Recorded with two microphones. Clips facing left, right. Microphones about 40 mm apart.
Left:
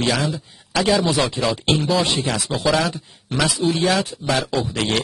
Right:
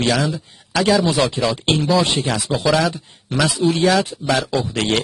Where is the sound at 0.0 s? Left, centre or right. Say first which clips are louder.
Right 2 dB; centre.